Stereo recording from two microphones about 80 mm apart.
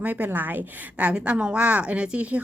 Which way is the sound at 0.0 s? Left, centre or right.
Right.